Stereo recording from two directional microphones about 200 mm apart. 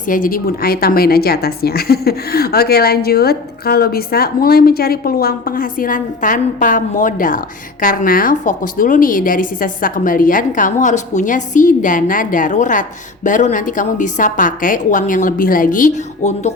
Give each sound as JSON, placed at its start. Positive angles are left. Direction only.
{"t": 0.1, "sound": "a woman's voice", "side_deg": 45}